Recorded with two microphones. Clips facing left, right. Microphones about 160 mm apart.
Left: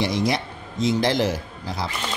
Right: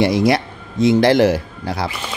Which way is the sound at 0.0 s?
65° right (ahead or behind).